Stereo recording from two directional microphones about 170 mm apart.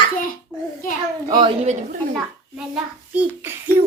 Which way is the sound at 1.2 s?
25° right (ahead or behind).